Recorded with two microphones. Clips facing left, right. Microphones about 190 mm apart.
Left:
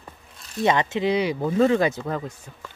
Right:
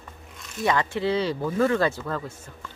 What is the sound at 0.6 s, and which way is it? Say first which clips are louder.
Speech: left 3 dB; 20° left (ahead or behind).